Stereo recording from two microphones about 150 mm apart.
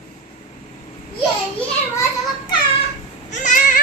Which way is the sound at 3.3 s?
55° left (ahead or behind).